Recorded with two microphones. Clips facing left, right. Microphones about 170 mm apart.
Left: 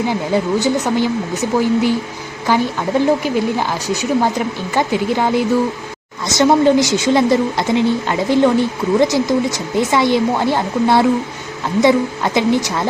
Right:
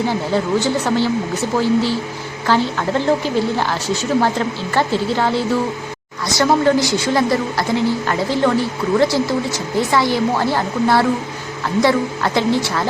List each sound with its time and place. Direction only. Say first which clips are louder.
0.3 s a woman's voice: left 2 dB; 15° left (ahead or behind)